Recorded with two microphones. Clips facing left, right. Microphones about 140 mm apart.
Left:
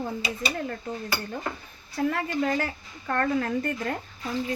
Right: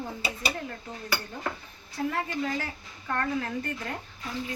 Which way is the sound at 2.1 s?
55° left (ahead or behind).